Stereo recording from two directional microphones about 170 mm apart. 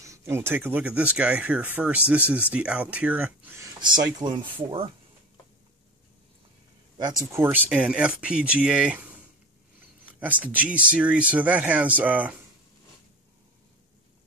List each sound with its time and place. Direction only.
0.0 s speech: 15° right (ahead or behind)
7.3 s speech: 15° right (ahead or behind)